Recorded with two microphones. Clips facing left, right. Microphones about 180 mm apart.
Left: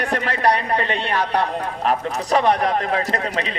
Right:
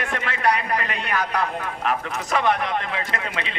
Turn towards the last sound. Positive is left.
turn(degrees=35)  # may be behind; listen again after turning